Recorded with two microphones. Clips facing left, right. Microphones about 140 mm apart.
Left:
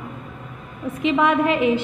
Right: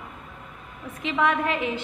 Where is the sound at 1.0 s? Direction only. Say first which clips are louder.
Left 6 dB; 15° left (ahead or behind).